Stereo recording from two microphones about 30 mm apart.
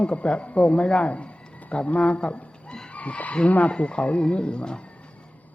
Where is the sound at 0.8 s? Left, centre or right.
Left.